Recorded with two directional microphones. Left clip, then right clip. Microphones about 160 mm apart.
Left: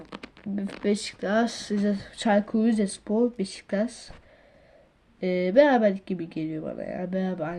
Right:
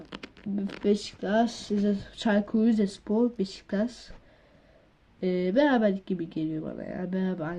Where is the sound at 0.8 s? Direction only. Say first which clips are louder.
Even; 10° left (ahead or behind).